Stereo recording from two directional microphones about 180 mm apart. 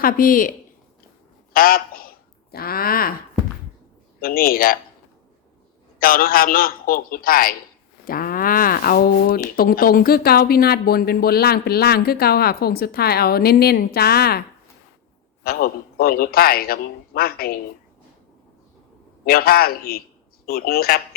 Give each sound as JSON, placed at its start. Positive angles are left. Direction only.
{"t": 0.0, "sound": "a man's voice", "side_deg": 50}
{"t": 1.5, "sound": "a sound", "side_deg": 55}
{"t": 4.2, "sound": "a man's voice", "side_deg": 55}
{"t": 6.0, "sound": "a man's voice", "side_deg": 55}
{"t": 15.4, "sound": "speech", "side_deg": 60}
{"t": 19.2, "sound": "speech", "side_deg": 55}